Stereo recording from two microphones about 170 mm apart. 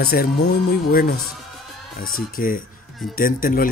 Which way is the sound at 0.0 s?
65° left (ahead or behind).